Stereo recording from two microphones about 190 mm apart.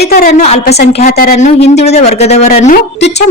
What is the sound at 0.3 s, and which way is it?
Speech, 35° left (ahead or behind).